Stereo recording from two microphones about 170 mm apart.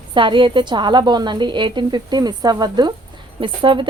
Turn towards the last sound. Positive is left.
turn(degrees=-30)  # may be behind; listen again after turning